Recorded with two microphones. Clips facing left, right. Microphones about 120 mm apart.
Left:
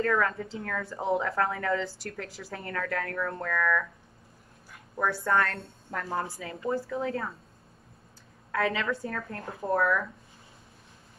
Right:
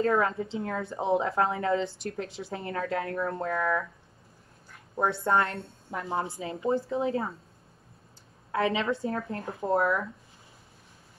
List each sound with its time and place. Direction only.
0.0 s a woman's voice: 25° right (ahead or behind)
4.9 s a woman's voice: 25° right (ahead or behind)
8.5 s a woman's voice: 25° right (ahead or behind)